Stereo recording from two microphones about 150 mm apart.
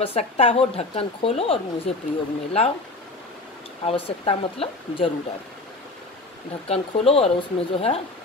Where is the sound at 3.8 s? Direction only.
40° left (ahead or behind).